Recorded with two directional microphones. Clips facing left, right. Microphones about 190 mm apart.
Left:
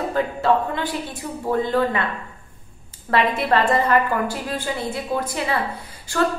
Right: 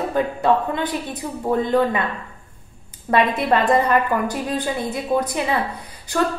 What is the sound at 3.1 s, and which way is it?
A woman's voice, 20° right (ahead or behind).